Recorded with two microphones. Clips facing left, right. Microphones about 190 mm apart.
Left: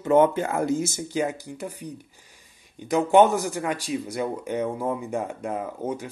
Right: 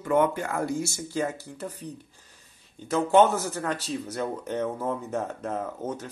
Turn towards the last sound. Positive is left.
turn(degrees=10)  # may be behind; listen again after turning